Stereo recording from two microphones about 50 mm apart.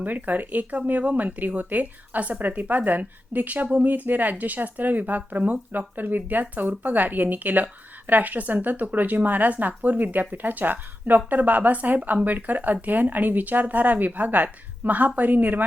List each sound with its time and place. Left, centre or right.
0.0 s speech: right